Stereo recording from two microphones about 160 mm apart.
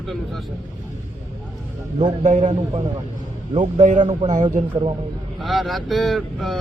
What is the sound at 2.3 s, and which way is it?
Speech, 45° right (ahead or behind).